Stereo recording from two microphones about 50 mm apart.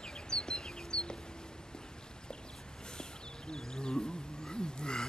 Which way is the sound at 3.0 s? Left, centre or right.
Centre.